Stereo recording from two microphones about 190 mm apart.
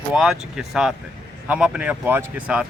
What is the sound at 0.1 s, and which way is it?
Speech, 5° right (ahead or behind).